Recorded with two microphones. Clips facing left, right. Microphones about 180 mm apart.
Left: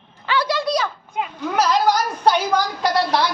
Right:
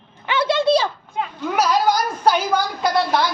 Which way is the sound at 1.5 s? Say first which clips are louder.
Even; 10° right (ahead or behind).